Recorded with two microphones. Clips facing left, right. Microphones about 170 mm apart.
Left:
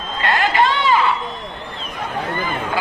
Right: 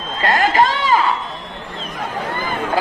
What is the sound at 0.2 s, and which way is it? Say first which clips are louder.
Chatter: right 2 dB; 45° right (ahead or behind).